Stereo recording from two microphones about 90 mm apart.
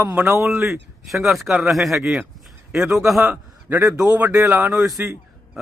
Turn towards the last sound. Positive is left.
turn(degrees=-10)  # may be behind; listen again after turning